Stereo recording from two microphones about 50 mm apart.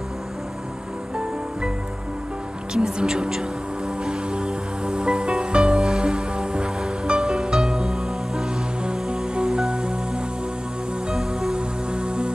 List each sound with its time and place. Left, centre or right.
2.7 s speech: centre
4.0 s music: centre